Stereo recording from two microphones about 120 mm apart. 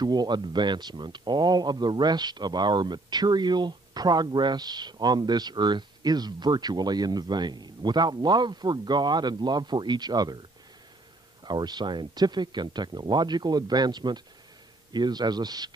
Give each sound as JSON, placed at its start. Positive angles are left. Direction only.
{"t": 0.0, "sound": "speech", "side_deg": -35}
{"t": 11.4, "sound": "speech", "side_deg": -35}